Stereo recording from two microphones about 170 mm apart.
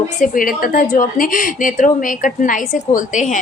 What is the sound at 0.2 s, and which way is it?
A woman's voice, 55° left (ahead or behind).